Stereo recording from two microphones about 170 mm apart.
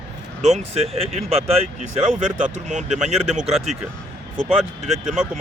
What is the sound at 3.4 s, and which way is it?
Speech, centre (ahead or behind).